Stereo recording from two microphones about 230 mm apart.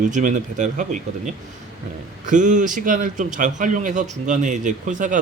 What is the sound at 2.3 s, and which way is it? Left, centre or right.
A man's voice, right.